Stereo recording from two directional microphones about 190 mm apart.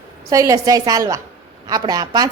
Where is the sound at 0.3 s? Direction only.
20° right (ahead or behind).